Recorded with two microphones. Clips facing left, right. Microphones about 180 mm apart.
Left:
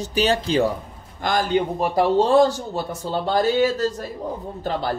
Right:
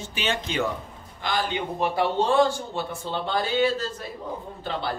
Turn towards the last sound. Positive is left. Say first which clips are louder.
# left 5 dB
turn(degrees=45)  # may be behind; listen again after turning